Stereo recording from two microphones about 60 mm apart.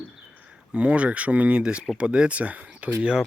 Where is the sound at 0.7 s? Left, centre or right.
Centre.